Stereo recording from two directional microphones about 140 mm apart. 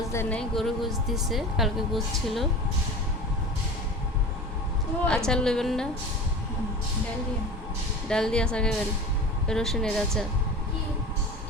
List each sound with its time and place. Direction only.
0.1 s speech: 20° left (ahead or behind)
0.3 s a woman's voice: centre (ahead or behind)
5.0 s a woman's voice: 5° left (ahead or behind)
8.0 s a woman's voice: 5° left (ahead or behind)